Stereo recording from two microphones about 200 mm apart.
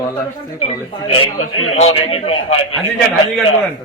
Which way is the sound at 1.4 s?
90° left.